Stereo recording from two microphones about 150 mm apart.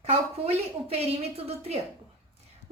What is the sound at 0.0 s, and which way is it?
A woman's voice, 45° right (ahead or behind).